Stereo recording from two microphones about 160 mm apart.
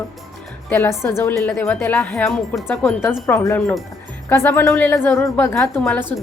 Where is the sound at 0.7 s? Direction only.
15° left (ahead or behind).